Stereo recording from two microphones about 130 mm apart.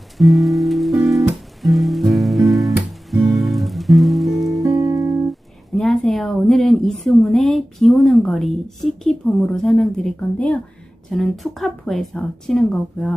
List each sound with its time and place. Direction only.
0.2 s music: centre (ahead or behind)
4.6 s music: 25° right (ahead or behind)
5.8 s a sound: centre (ahead or behind)
11.1 s a woman's voice: 5° left (ahead or behind)